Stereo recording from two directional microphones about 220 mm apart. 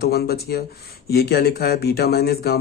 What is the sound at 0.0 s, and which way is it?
Speech, 45° left (ahead or behind).